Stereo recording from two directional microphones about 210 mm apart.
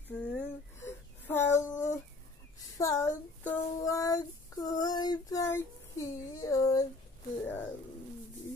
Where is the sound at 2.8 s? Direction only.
15° left (ahead or behind).